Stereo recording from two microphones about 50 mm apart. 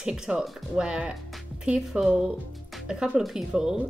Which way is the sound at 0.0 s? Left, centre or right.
Centre.